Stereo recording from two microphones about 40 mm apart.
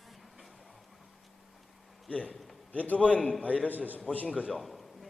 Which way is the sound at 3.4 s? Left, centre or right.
Left.